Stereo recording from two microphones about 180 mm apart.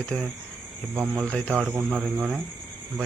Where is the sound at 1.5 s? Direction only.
5° right (ahead or behind).